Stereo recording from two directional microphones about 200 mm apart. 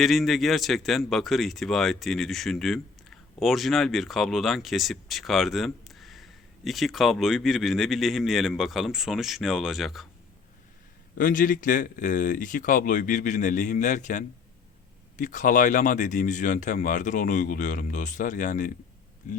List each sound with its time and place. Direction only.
0.0 s speech: centre (ahead or behind)
11.2 s speech: 40° left (ahead or behind)